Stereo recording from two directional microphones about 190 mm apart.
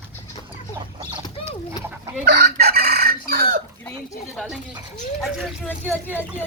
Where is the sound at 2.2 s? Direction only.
55° right (ahead or behind).